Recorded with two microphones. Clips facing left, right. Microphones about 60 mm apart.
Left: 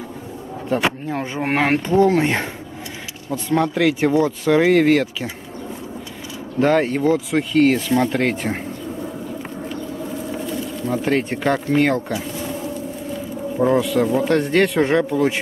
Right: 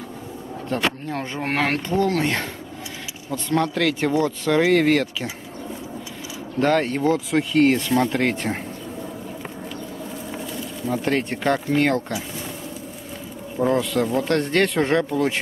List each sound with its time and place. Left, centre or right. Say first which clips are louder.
0.7 s speech: left 4 dB; centre
3.3 s speech: left 3 dB; centre
6.6 s speech: left 3 dB; centre
10.3 s speech: left 5 dB; centre
13.6 s speech: left 3 dB; centre